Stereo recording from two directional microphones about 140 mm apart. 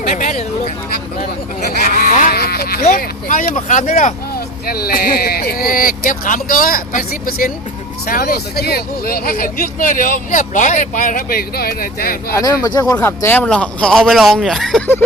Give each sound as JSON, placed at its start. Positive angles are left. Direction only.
{"t": 0.1, "sound": "a sound", "side_deg": 60}
{"t": 1.8, "sound": "speech", "side_deg": 90}
{"t": 4.6, "sound": "speech", "side_deg": 90}
{"t": 12.4, "sound": "speech", "side_deg": 25}
{"t": 13.0, "sound": "a man's voice", "side_deg": 15}